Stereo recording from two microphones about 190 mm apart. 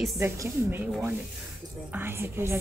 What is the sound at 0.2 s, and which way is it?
A woman's voice, 10° right (ahead or behind).